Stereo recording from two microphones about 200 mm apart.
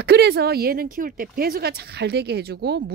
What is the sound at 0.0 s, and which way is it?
Speech, 55° right (ahead or behind).